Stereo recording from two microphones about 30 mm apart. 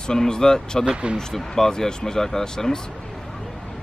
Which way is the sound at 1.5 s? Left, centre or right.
Centre.